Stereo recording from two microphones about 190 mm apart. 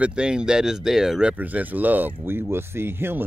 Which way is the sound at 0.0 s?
5° right (ahead or behind).